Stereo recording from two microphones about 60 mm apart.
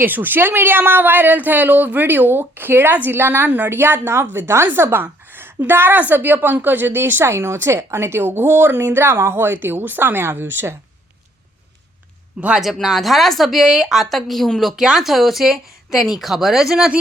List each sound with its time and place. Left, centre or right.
0.0 s a woman's voice: right
12.5 s speech: centre
14.8 s speech: centre